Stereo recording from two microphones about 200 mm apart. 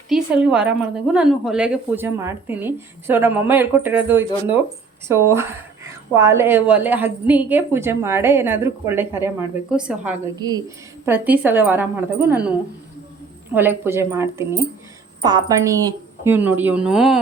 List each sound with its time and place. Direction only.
0.1 s speech: 5° right (ahead or behind)
10.3 s a woman's voice: 20° right (ahead or behind)
13.5 s speech: 10° right (ahead or behind)